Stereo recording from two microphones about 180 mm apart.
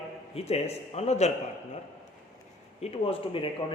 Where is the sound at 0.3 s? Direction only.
35° left (ahead or behind).